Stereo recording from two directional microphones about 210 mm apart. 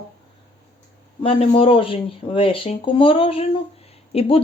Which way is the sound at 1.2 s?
25° left (ahead or behind).